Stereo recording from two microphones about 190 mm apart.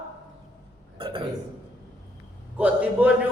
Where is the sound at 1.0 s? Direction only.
25° right (ahead or behind).